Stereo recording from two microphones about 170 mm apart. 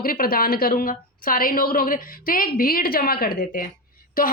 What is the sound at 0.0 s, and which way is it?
A woman's voice, 60° left (ahead or behind).